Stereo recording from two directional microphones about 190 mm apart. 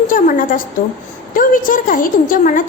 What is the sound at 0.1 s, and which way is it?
A woman's voice, 45° left (ahead or behind).